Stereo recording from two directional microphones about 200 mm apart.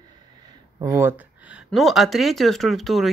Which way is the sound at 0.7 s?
15° right (ahead or behind).